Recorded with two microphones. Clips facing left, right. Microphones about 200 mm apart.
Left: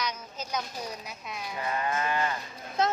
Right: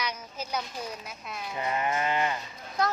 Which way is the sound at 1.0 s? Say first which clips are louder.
Even; centre (ahead or behind).